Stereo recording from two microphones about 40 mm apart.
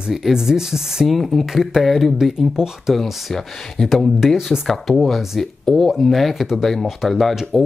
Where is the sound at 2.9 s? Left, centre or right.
Centre.